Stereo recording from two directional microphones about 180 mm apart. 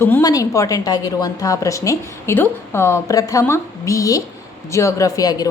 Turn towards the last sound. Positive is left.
turn(degrees=20)  # may be behind; listen again after turning